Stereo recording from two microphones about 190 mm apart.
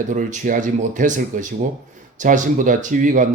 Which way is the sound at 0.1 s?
45° right (ahead or behind).